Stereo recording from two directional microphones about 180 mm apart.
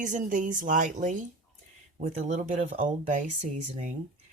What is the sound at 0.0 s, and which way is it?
Speech, 45° right (ahead or behind).